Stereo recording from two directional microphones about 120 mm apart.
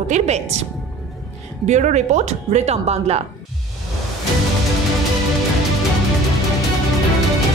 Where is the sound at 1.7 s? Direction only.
75° right (ahead or behind).